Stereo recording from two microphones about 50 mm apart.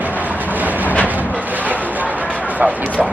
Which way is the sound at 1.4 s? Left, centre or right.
Right.